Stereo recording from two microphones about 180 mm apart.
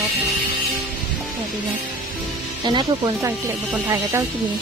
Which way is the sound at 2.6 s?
25° right (ahead or behind).